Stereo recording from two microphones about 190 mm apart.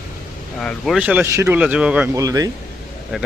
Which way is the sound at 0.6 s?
Centre (ahead or behind).